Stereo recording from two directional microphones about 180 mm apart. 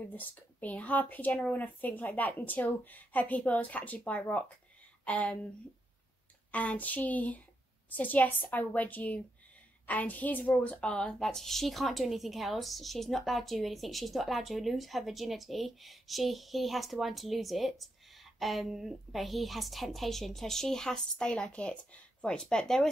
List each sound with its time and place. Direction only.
0.0 s a woman's voice: 10° left (ahead or behind)
6.5 s a woman's voice: 10° left (ahead or behind)